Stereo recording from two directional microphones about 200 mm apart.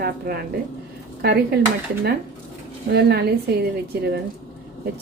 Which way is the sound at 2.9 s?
55° right (ahead or behind).